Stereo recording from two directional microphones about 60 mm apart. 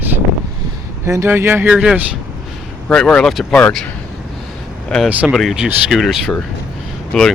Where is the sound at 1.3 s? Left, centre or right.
Right.